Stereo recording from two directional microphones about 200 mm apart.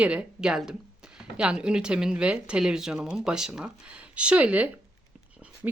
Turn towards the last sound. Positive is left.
turn(degrees=-5)  # may be behind; listen again after turning